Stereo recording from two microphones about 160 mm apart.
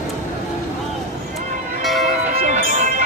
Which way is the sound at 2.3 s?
60° right (ahead or behind).